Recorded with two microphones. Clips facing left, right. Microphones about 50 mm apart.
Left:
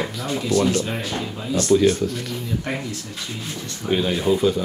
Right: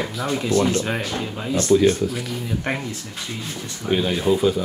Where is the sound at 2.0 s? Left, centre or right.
Centre.